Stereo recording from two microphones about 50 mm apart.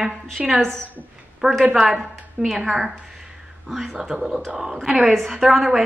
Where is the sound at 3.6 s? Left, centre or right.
Centre.